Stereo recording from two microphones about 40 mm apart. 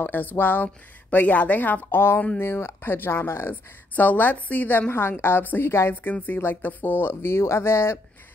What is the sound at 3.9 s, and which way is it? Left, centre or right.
Speech, left.